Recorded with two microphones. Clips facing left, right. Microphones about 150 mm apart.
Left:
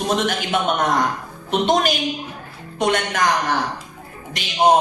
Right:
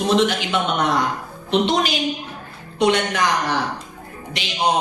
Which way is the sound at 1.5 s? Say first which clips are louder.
Left 1 dB; 50° left (ahead or behind).